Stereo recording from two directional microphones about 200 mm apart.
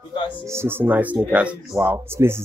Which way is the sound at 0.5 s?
10° right (ahead or behind).